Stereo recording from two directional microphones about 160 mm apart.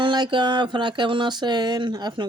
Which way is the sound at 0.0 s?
30° right (ahead or behind).